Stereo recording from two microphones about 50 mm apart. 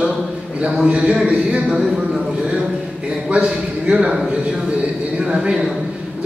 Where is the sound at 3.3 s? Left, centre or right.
Centre.